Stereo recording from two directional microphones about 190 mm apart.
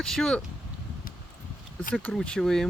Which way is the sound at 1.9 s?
Centre (ahead or behind).